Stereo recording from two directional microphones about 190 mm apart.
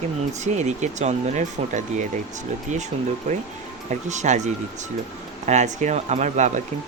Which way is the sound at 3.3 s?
35° right (ahead or behind).